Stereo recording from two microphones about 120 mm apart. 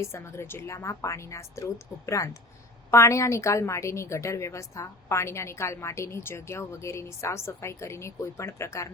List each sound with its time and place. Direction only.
0.0 s a woman's voice: 20° left (ahead or behind)